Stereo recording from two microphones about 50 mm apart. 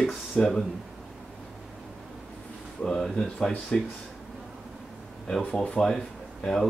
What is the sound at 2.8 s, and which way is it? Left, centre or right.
Speech, centre.